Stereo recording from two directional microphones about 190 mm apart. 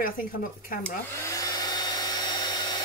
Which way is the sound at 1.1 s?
15° left (ahead or behind).